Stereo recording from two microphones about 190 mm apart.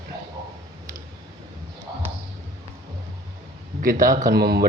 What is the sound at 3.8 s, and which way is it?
Speech, 45° right (ahead or behind).